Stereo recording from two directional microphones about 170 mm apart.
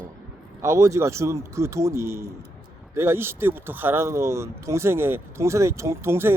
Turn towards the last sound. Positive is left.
turn(degrees=-15)  # may be behind; listen again after turning